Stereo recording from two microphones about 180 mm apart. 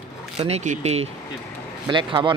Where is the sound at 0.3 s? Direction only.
35° right (ahead or behind).